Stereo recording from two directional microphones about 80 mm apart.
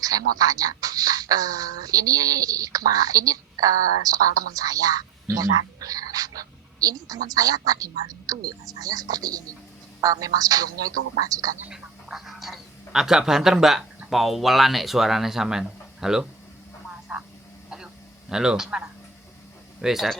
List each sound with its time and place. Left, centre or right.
0.0 s speech: right
11.7 s speech: centre
18.3 s speech: centre